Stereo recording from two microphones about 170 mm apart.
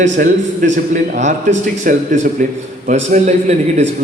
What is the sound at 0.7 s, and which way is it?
A man's voice, 45° right (ahead or behind).